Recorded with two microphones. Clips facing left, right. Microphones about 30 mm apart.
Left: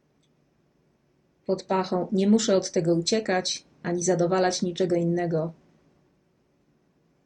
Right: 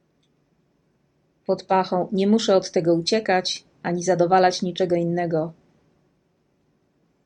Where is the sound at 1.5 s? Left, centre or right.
Right.